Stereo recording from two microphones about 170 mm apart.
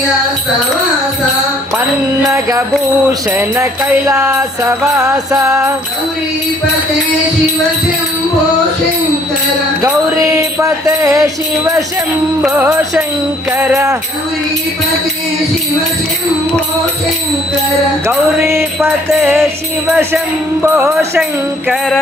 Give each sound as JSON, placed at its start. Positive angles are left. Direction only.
{"t": 2.2, "sound": "music", "side_deg": -20}
{"t": 10.2, "sound": "music", "side_deg": -20}
{"t": 12.4, "sound": "music", "side_deg": -10}
{"t": 18.0, "sound": "music", "side_deg": -15}
{"t": 21.7, "sound": "music", "side_deg": 0}